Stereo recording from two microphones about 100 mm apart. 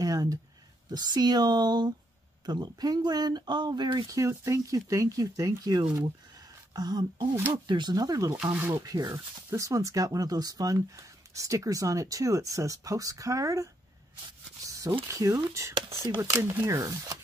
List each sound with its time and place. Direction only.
0.0 s a sound: 35° right (ahead or behind)
0.8 s speech: 45° right (ahead or behind)
4.2 s speech: 30° right (ahead or behind)
8.5 s speech: 25° right (ahead or behind)
14.7 s a sound: 35° right (ahead or behind)
15.0 s speech: 30° right (ahead or behind)